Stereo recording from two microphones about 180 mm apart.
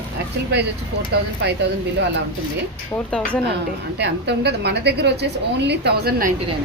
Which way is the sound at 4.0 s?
70° right (ahead or behind).